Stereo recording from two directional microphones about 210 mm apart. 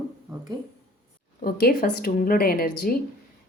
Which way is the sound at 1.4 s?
45° left (ahead or behind).